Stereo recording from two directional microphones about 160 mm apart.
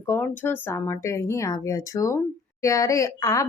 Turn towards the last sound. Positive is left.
turn(degrees=20)  # may be behind; listen again after turning